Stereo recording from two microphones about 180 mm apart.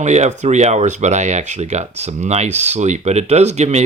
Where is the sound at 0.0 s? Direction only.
40° right (ahead or behind).